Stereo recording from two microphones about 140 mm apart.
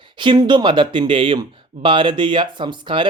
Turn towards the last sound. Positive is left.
turn(degrees=-35)  # may be behind; listen again after turning